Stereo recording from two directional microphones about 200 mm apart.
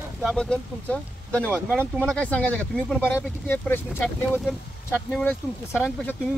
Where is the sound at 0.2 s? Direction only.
Centre (ahead or behind).